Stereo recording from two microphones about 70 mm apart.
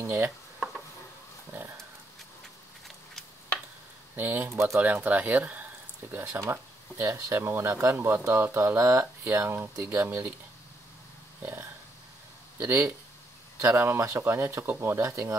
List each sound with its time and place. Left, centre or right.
0.0 s speech: right
4.2 s speech: right
4.7 s speech: right
12.5 s speech: right